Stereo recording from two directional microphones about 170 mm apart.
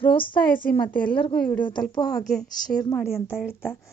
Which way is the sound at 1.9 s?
20° left (ahead or behind).